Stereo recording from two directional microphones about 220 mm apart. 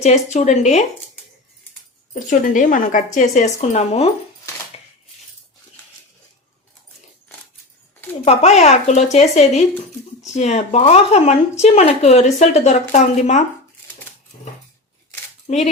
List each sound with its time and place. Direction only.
0.0 s speech: 30° left (ahead or behind)
2.1 s speech: 35° left (ahead or behind)
8.2 s speech: 30° left (ahead or behind)
15.4 s speech: 30° left (ahead or behind)